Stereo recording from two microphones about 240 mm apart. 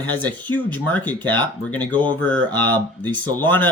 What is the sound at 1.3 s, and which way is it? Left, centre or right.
Speech, centre.